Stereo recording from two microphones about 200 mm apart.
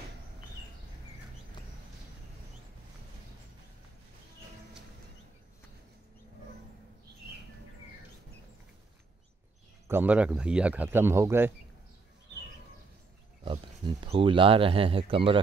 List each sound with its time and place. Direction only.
9.8 s speech: 10° right (ahead or behind)
13.4 s speech: 25° right (ahead or behind)